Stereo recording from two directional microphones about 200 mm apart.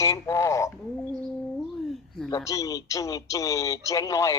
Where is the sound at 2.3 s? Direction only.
15° left (ahead or behind).